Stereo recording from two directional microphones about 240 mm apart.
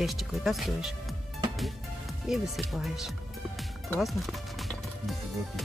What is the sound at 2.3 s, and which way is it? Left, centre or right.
Speech, centre.